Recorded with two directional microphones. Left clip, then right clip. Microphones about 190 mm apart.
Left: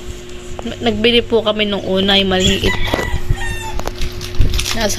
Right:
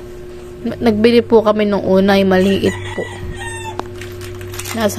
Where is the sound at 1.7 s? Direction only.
10° right (ahead or behind).